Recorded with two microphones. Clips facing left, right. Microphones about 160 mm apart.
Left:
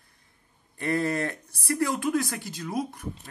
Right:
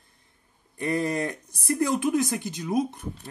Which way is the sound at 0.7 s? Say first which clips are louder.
Even; 15° right (ahead or behind).